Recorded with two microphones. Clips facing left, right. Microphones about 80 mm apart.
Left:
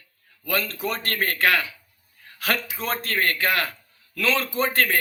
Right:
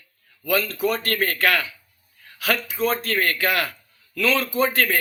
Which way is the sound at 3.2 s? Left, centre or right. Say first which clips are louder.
Right 1 dB; left.